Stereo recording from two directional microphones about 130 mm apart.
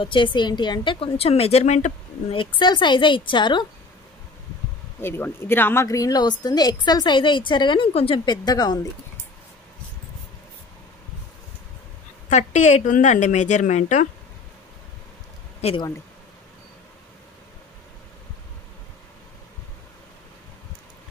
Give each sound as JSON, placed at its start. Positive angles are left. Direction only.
{"t": 0.0, "sound": "a woman's voice", "side_deg": 40}
{"t": 2.3, "sound": "a woman's voice", "side_deg": 40}
{"t": 5.0, "sound": "a woman's voice", "side_deg": 15}
{"t": 8.3, "sound": "a woman's voice", "side_deg": 30}
{"t": 12.3, "sound": "a woman's voice", "side_deg": 65}
{"t": 15.6, "sound": "a woman's voice", "side_deg": 40}